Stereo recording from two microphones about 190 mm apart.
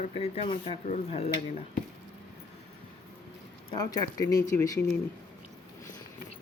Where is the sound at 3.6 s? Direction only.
20° left (ahead or behind).